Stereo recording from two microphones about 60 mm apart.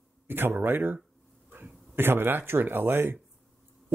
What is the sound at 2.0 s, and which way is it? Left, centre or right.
Speech, right.